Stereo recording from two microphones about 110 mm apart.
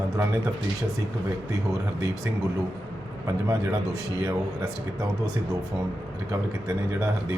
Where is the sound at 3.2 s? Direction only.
30° right (ahead or behind).